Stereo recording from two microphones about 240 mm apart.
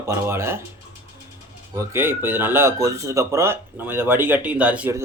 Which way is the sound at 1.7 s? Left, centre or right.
Centre.